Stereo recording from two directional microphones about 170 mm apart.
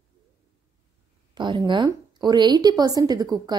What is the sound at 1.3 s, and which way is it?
A woman's voice, 25° right (ahead or behind).